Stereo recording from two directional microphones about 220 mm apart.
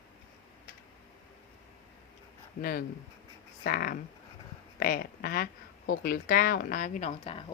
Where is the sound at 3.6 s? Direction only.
40° left (ahead or behind).